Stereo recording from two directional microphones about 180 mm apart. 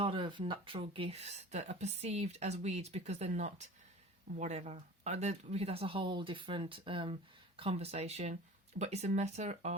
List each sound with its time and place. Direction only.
0.0 s speech: 30° right (ahead or behind)